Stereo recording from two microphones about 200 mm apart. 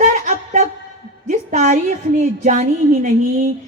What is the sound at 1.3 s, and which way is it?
A man's voice, 35° right (ahead or behind).